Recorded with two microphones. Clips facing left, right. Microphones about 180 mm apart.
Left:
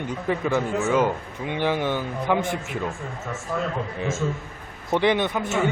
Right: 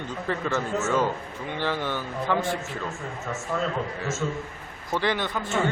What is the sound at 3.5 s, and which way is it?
Speech, 10° left (ahead or behind).